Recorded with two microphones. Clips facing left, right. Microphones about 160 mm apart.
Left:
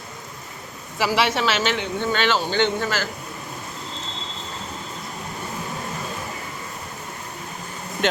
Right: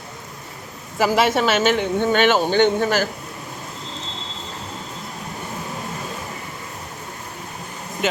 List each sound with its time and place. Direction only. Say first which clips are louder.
0.9 s speech: right 4 dB; 45° right (ahead or behind)